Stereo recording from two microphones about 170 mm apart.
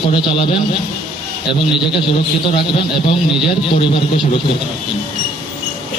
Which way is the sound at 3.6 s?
30° left (ahead or behind).